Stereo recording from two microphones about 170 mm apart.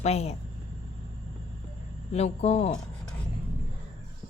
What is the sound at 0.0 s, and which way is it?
Speech, 40° left (ahead or behind).